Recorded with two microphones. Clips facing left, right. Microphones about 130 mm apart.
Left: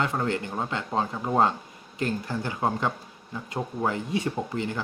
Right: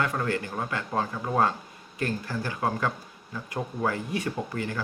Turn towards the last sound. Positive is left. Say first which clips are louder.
# left 2 dB
turn(degrees=20)  # may be behind; listen again after turning